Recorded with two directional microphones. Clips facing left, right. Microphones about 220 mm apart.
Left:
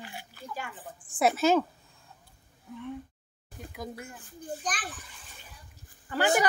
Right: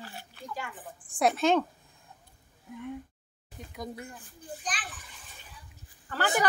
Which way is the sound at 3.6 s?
Centre (ahead or behind).